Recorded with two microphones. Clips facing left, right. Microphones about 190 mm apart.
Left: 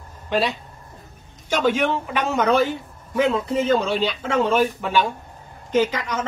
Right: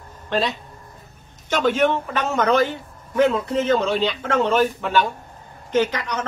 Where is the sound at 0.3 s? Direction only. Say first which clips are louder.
Left 1 dB; 10° left (ahead or behind).